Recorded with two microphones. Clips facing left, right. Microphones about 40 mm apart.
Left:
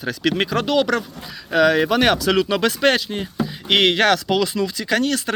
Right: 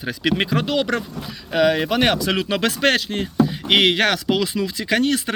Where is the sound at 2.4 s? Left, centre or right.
Right.